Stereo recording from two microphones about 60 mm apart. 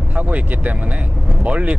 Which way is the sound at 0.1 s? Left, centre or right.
Right.